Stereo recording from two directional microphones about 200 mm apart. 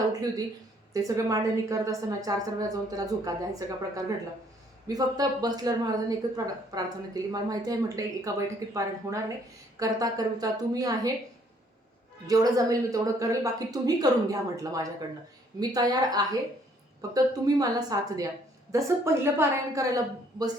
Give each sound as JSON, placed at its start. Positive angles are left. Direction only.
{"t": 0.1, "sound": "a woman's voice", "side_deg": -20}
{"t": 12.3, "sound": "a woman's voice", "side_deg": -15}